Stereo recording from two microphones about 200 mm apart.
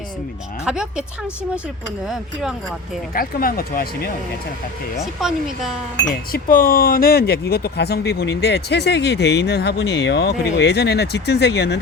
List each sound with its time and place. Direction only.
0.6 s speech: 5° right (ahead or behind)
2.0 s speech: centre (ahead or behind)
3.2 s speech: 45° left (ahead or behind)
4.9 s speech: centre (ahead or behind)
6.3 s speech: 45° left (ahead or behind)